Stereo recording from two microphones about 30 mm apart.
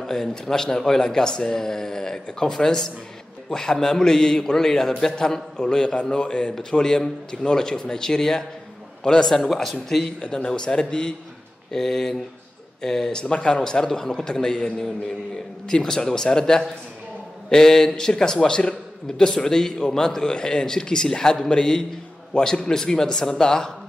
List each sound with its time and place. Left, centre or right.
0.0 s a man's voice: centre; by 6.5 s left
6.7 s a man's voice: left
9.6 s speech: centre
10.2 s a man's voice: left
11.7 s speech: centre
12.8 s a man's voice: centre
13.2 s speech: left
13.7 s a man's voice: left